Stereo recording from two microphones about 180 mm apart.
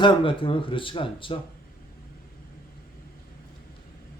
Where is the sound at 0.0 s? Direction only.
30° left (ahead or behind).